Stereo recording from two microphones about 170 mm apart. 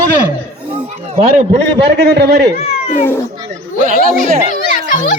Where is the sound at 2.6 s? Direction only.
40° left (ahead or behind).